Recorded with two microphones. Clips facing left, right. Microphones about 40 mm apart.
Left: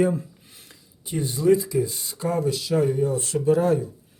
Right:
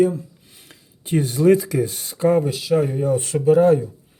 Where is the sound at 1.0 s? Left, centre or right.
Right.